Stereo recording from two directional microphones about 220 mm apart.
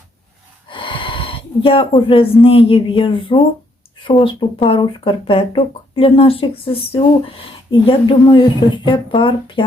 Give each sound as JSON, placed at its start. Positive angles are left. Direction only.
{"t": 0.7, "sound": "speech", "side_deg": 20}